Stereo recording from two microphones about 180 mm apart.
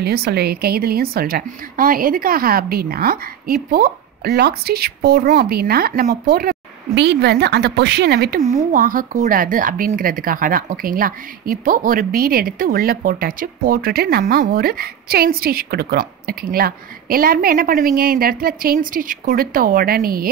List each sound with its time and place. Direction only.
0.0 s a woman's voice: 60° right (ahead or behind)
7.0 s a woman's voice: 70° right (ahead or behind)
8.7 s speech: 50° right (ahead or behind)